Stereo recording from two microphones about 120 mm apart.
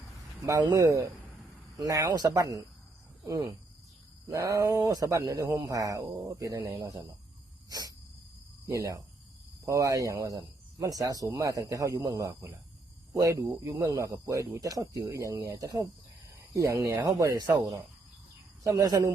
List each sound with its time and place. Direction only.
0.4 s speech: 30° right (ahead or behind)
7.7 s insect: 35° right (ahead or behind)
8.6 s speech: 30° right (ahead or behind)
18.6 s speech: 30° right (ahead or behind)